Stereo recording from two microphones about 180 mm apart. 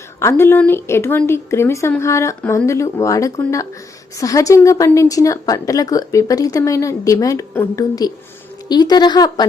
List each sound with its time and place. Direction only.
0.2 s a woman's voice: 15° left (ahead or behind)